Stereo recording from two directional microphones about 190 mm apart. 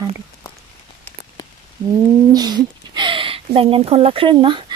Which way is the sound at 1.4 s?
20° left (ahead or behind).